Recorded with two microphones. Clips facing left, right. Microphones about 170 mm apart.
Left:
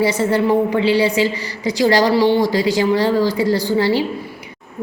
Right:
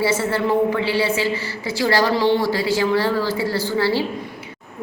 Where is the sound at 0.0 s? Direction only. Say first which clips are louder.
Left 4 dB; 15° left (ahead or behind).